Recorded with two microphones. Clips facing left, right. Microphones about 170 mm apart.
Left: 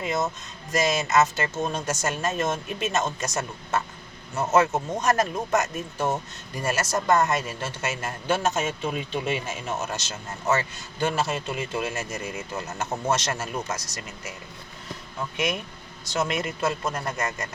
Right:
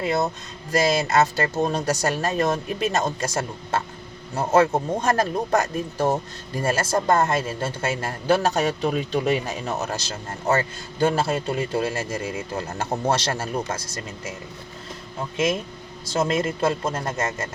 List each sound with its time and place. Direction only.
0.0 s speech: 35° right (ahead or behind)
16.1 s speech: 35° right (ahead or behind)